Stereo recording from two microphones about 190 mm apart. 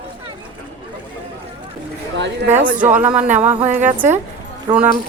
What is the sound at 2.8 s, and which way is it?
Speech, 10° right (ahead or behind).